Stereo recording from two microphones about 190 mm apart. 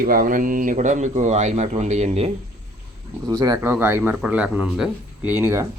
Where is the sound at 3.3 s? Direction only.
20° right (ahead or behind).